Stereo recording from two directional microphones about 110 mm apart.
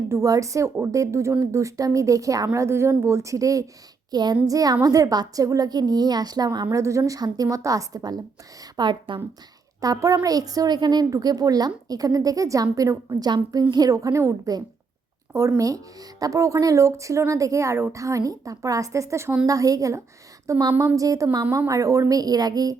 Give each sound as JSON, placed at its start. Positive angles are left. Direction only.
{"t": 0.1, "sound": "a woman's voice", "side_deg": -30}
{"t": 9.8, "sound": "a woman's voice", "side_deg": -30}
{"t": 20.7, "sound": "a woman's voice", "side_deg": -25}